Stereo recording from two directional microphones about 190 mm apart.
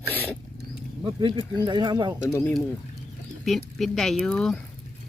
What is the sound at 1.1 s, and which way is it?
Speech, 25° right (ahead or behind).